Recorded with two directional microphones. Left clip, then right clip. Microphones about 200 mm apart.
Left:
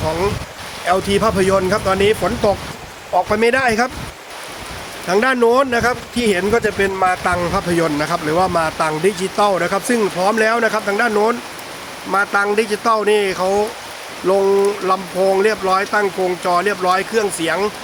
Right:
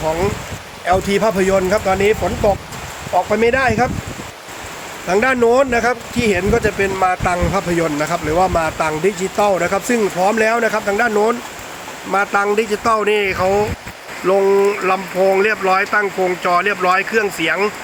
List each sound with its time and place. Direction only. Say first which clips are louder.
0.9 s speech: right 1 dB; centre (ahead or behind); by 3.6 s 15° left (ahead or behind)
5.0 s speech: even; 5° left (ahead or behind)